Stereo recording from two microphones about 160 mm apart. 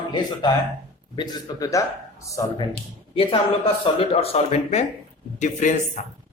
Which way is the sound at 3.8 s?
35° left (ahead or behind).